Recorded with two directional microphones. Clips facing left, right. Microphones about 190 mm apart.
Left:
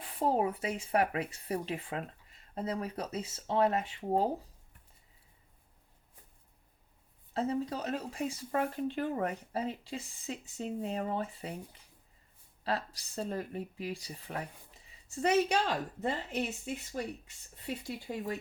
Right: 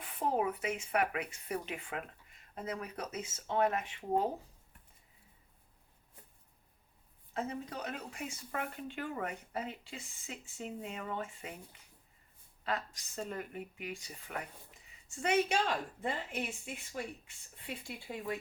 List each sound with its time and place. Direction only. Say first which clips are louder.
0.2 s speech: left 3 dB; 35° left (ahead or behind)
7.3 s speech: left 6 dB; 35° left (ahead or behind)